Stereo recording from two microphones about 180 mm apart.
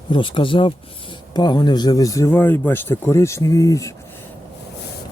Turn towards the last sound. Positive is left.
turn(degrees=20)  # may be behind; listen again after turning